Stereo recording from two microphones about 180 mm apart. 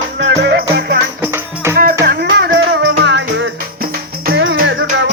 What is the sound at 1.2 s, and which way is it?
Music, 15° right (ahead or behind).